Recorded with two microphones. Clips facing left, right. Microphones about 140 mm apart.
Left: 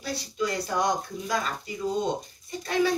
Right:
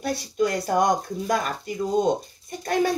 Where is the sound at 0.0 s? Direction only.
55° right (ahead or behind).